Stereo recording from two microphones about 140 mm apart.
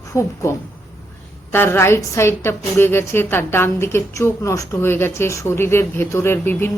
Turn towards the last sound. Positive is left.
turn(degrees=15)  # may be behind; listen again after turning